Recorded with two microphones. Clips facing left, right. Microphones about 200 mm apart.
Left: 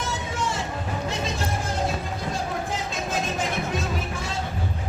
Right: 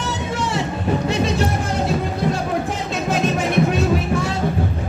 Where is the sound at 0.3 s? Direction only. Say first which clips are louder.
Right 5 dB; 70° right (ahead or behind).